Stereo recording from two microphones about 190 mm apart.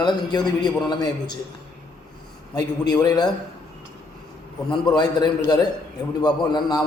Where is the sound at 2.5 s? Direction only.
20° left (ahead or behind).